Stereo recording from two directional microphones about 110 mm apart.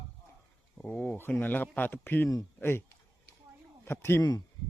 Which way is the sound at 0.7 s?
15° left (ahead or behind).